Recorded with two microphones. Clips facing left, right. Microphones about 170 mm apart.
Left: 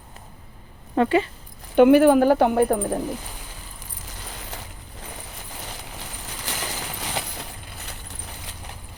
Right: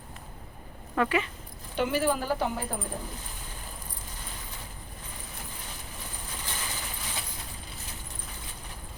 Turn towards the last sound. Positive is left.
turn(degrees=70)  # may be behind; listen again after turning